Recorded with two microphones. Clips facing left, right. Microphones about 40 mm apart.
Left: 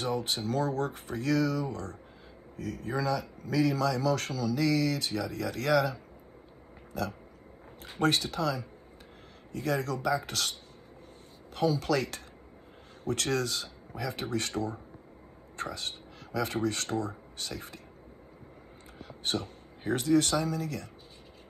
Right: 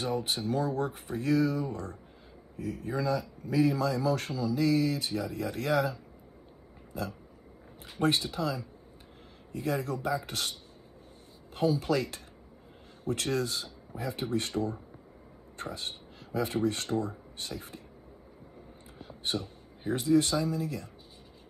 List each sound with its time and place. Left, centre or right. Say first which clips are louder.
0.0 s speech: even; left
11.5 s speech: even; left
15.5 s speech: left 2 dB; left
19.3 s speech: left 1 dB; left